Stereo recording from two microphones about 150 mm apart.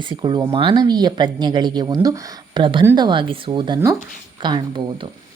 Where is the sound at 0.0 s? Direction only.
30° right (ahead or behind).